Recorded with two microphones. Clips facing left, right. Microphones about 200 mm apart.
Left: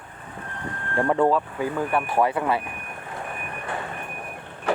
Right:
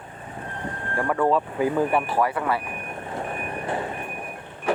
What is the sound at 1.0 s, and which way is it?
Speech, 20° left (ahead or behind).